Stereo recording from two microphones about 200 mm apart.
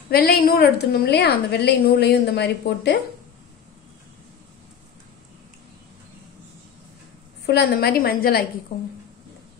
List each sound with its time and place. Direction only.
0.1 s a woman's voice: 50° left (ahead or behind)
7.4 s a woman's voice: 55° left (ahead or behind)